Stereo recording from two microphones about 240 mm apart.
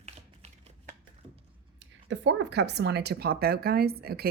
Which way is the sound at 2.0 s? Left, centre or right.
Right.